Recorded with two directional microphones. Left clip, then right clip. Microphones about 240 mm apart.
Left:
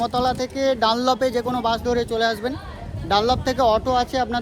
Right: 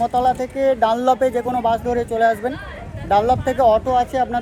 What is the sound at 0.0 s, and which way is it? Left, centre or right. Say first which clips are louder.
Speech: right 4 dB; centre.